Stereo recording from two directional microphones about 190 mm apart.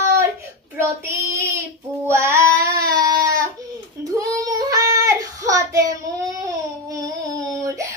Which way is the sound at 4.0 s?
20° right (ahead or behind).